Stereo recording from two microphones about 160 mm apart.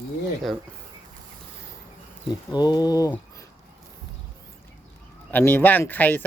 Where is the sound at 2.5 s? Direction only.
25° left (ahead or behind).